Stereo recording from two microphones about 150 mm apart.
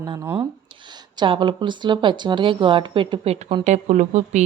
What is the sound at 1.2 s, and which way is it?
A woman's voice, 30° right (ahead or behind).